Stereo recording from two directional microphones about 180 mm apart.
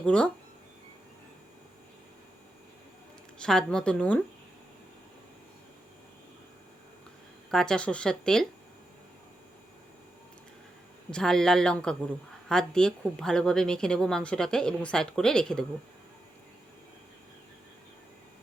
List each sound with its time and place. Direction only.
0.0 s speech: 5° left (ahead or behind)
3.4 s speech: 5° left (ahead or behind)
7.5 s speech: 5° left (ahead or behind)
11.1 s speech: 5° left (ahead or behind)